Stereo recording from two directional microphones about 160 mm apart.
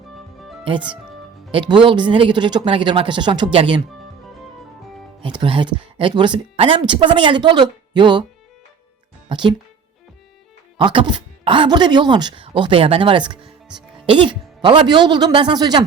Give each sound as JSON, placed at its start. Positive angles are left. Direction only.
{"t": 1.5, "sound": "speech", "side_deg": -30}
{"t": 5.2, "sound": "speech", "side_deg": -30}
{"t": 9.3, "sound": "speech", "side_deg": -30}
{"t": 10.8, "sound": "speech", "side_deg": -30}